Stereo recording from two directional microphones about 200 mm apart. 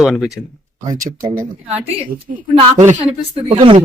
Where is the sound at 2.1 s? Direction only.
45° right (ahead or behind).